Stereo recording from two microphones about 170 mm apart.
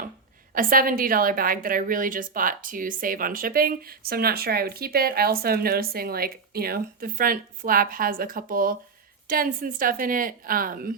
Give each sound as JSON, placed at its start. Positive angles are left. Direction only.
{"t": 0.5, "sound": "a woman's voice", "side_deg": -55}